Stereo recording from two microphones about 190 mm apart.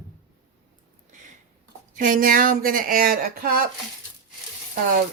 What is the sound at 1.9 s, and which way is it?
Speech, 45° right (ahead or behind).